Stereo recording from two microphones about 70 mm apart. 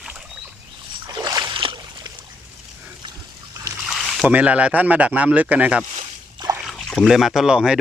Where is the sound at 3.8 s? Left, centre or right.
Centre.